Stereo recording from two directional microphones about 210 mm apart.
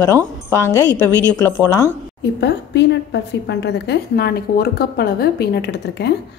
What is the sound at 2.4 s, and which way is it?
A woman's voice, 55° left (ahead or behind).